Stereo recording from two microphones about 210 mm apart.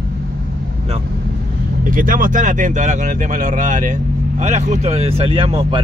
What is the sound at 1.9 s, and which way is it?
A man's voice, 40° right (ahead or behind).